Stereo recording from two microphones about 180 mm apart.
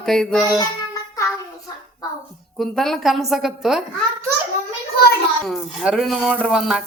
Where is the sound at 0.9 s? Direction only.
20° left (ahead or behind).